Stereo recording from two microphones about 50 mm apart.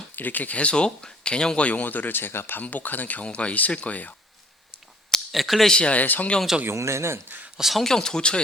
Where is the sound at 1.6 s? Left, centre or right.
Left.